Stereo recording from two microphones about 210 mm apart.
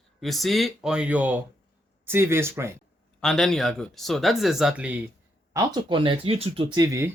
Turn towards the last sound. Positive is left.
turn(degrees=-15)  # may be behind; listen again after turning